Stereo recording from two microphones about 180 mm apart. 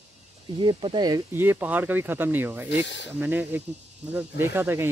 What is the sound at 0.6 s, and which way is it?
Speech, 25° right (ahead or behind).